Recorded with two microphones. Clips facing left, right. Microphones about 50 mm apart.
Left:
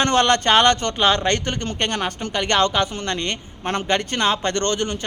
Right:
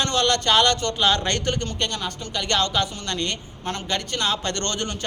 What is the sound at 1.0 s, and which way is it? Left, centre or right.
Speech, centre.